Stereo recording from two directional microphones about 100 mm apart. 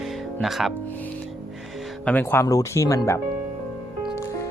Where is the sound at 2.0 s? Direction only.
20° left (ahead or behind).